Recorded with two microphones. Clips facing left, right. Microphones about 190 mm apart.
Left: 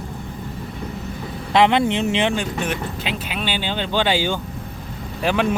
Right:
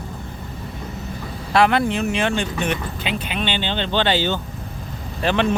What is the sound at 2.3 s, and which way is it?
Speech, 5° left (ahead or behind).